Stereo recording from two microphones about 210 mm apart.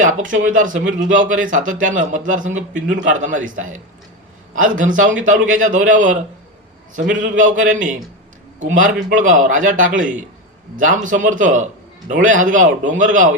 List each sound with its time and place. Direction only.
0.3 s a man's voice: 40° right (ahead or behind)